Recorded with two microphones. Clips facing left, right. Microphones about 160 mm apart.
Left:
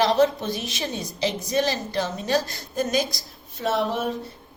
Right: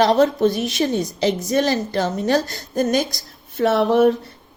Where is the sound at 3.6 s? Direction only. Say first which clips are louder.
Right 9 dB; 65° right (ahead or behind).